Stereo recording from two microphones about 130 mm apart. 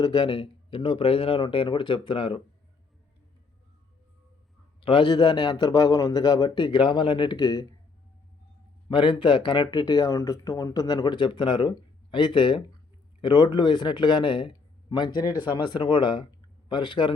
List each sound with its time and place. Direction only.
0.0 s speech: 35° left (ahead or behind)
4.8 s speech: 40° left (ahead or behind)
8.9 s speech: 40° left (ahead or behind)